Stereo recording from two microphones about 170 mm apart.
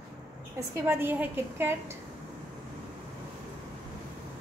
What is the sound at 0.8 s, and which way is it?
Speech, 15° right (ahead or behind).